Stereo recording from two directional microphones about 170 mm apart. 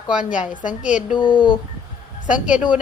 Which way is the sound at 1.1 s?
30° left (ahead or behind).